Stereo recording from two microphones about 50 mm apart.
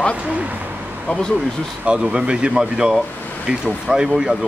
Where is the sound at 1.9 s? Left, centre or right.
Centre.